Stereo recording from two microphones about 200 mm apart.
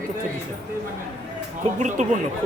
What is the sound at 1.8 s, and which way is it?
Speech, 35° right (ahead or behind).